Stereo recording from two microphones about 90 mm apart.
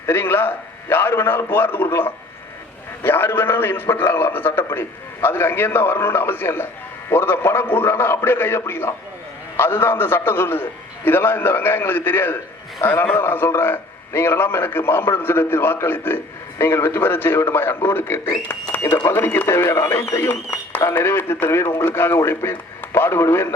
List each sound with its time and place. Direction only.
0.0 s a man's voice: 25° left (ahead or behind)